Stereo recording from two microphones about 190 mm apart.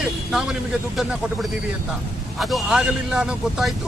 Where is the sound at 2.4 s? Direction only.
Centre (ahead or behind).